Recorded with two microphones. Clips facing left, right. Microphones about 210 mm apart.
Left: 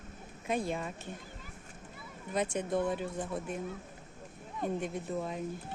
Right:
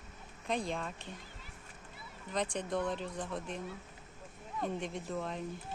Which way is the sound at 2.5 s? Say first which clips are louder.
Left 3 dB; 5° left (ahead or behind).